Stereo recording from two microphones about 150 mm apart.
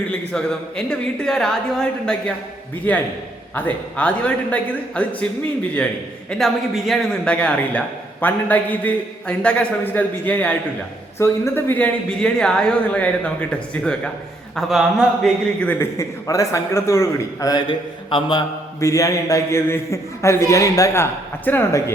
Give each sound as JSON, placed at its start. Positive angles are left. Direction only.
{"t": 0.1, "sound": "a sound", "side_deg": 5}
{"t": 0.9, "sound": "a man's voice", "side_deg": 5}
{"t": 14.5, "sound": "a man's voice", "side_deg": -5}
{"t": 15.6, "sound": "a man's voice", "side_deg": 20}
{"t": 18.8, "sound": "a man's voice", "side_deg": 20}